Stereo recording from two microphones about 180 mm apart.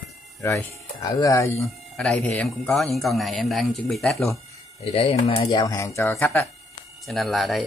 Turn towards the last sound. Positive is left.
turn(degrees=0)  # may be behind; listen again after turning